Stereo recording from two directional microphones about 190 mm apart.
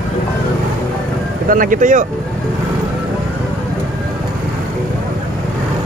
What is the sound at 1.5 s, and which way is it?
Speech, 45° right (ahead or behind).